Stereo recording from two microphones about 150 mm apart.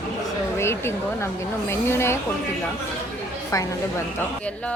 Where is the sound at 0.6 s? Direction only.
15° left (ahead or behind).